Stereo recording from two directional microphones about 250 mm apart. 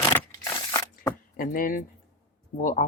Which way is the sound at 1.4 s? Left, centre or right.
Left.